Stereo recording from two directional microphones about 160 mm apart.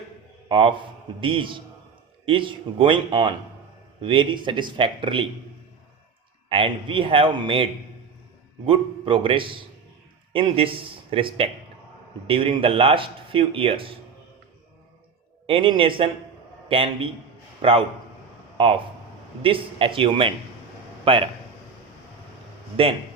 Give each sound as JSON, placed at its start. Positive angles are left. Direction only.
{"t": 0.4, "sound": "a man's voice", "side_deg": -35}
{"t": 6.5, "sound": "speech", "side_deg": -35}
{"t": 15.4, "sound": "a man's voice", "side_deg": -35}
{"t": 22.8, "sound": "speech", "side_deg": -35}